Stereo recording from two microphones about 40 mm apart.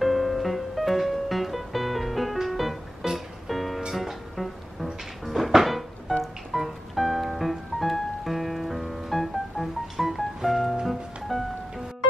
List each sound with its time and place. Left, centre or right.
0.0 s music: centre
3.0 s music: centre
3.4 s music: centre